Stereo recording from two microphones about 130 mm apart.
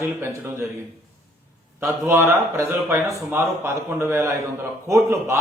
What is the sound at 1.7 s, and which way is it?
A man's voice, 20° right (ahead or behind).